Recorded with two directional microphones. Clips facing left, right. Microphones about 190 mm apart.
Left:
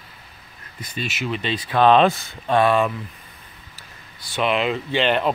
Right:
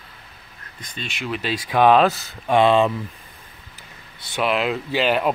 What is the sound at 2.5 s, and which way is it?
Speech, 20° right (ahead or behind).